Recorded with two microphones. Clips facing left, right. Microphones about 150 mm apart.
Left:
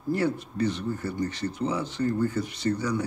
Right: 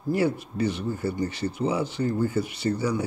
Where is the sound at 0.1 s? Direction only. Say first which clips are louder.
Right 2 dB; 10° right (ahead or behind).